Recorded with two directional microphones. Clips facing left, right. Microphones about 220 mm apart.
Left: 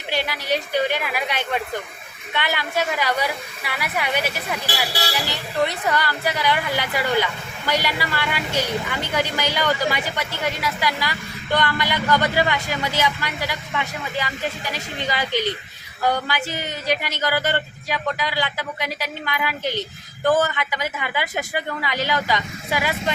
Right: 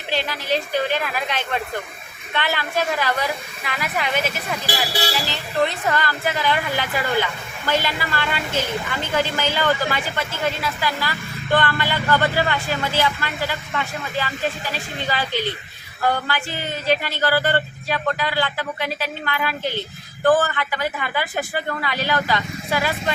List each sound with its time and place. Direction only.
0.1 s speech: 10° left (ahead or behind)